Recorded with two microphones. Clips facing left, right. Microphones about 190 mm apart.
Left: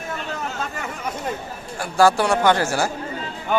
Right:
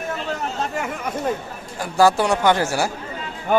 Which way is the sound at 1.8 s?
15° right (ahead or behind).